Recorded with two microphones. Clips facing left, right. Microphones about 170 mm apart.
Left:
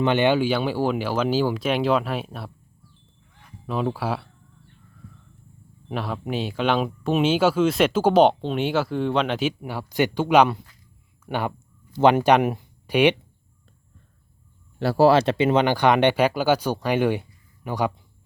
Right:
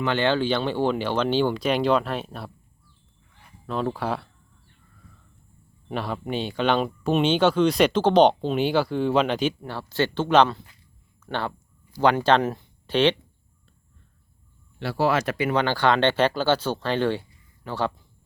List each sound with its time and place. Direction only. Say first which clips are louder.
0.0 s speech: left 3 dB; 15° left (ahead or behind)
3.7 s speech: left 1 dB; 5° left (ahead or behind)
5.9 s speech: even; centre (ahead or behind)
14.8 s speech: left 6 dB; 40° left (ahead or behind); by 17.9 s 15° left (ahead or behind)